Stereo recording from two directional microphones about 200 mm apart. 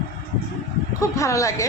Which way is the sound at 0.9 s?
15° left (ahead or behind).